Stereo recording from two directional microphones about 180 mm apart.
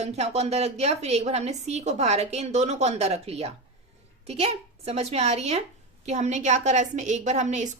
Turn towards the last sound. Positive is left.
turn(degrees=-40)  # may be behind; listen again after turning